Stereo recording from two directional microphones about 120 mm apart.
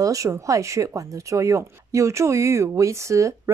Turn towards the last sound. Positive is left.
turn(degrees=-25)  # may be behind; listen again after turning